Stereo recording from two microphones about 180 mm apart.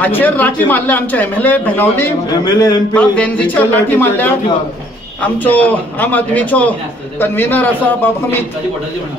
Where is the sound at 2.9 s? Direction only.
5° left (ahead or behind).